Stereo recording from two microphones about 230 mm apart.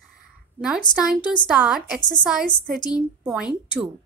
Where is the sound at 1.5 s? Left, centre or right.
Centre.